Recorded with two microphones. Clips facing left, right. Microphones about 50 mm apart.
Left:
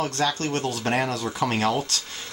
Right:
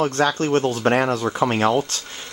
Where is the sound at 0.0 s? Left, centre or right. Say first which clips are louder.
Right 5 dB; right.